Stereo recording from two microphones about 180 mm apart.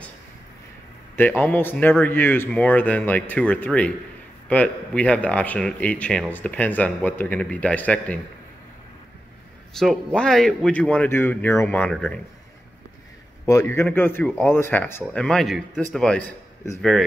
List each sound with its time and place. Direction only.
1.1 s speech: 10° left (ahead or behind)
9.8 s speech: 5° left (ahead or behind)
13.5 s a man's voice: 15° left (ahead or behind)